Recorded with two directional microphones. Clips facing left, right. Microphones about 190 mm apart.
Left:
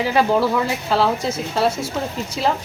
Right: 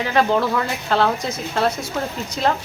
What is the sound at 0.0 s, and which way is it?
Speech, 10° left (ahead or behind).